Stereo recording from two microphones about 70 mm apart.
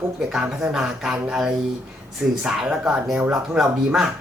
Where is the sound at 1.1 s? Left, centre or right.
Centre.